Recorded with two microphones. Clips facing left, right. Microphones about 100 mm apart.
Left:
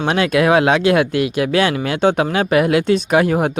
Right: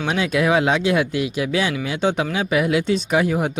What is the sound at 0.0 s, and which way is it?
Speech, 65° left (ahead or behind).